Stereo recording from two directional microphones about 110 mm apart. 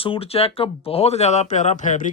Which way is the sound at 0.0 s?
60° left (ahead or behind).